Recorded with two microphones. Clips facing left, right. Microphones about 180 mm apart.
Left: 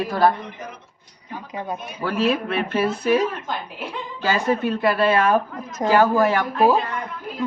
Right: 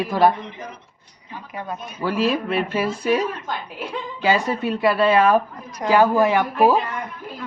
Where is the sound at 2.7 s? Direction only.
10° right (ahead or behind).